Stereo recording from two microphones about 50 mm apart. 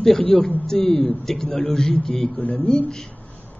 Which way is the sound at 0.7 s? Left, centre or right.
Centre.